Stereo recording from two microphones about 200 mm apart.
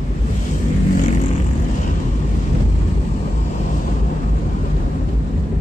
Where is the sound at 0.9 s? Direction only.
35° left (ahead or behind).